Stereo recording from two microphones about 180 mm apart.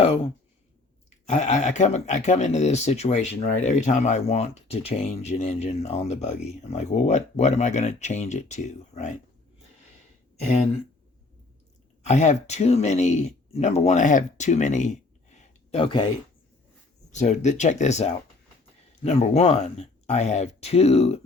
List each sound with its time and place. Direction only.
1.3 s speech: 40° left (ahead or behind)
12.0 s speech: 40° left (ahead or behind)
17.1 s speech: 40° left (ahead or behind)